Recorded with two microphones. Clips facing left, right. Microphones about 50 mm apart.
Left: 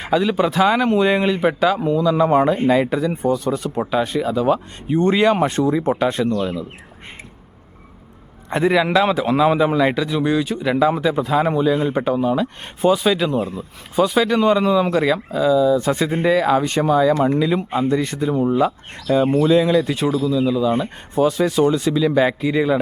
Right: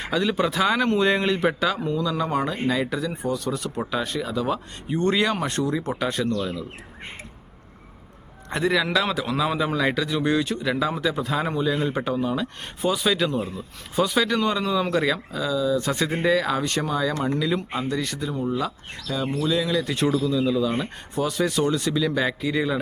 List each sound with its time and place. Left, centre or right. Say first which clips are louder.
0.0 s a man's voice: left 5 dB; centre
8.4 s a man's voice: left 6 dB; left
19.9 s a man's voice: left 3 dB; centre